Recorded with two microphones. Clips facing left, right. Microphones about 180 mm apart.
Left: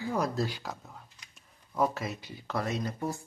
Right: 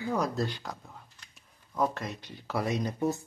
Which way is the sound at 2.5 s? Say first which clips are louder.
Right 2 dB; 15° right (ahead or behind).